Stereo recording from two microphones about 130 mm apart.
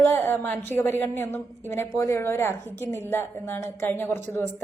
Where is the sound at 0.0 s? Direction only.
20° left (ahead or behind).